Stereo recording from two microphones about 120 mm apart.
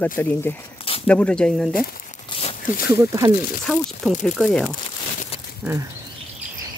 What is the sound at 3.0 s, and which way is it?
Speech, 25° right (ahead or behind).